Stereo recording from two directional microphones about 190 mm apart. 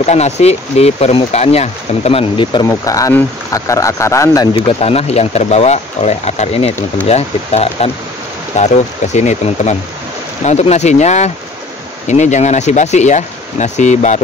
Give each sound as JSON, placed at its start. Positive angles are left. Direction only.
{"t": 0.0, "sound": "speech", "side_deg": 35}
{"t": 4.6, "sound": "speech", "side_deg": 30}